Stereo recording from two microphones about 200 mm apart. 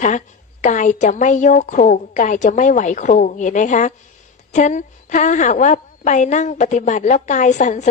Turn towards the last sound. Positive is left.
turn(degrees=35)  # may be behind; listen again after turning